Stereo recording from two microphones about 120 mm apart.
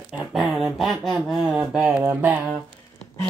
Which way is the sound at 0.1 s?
5° right (ahead or behind).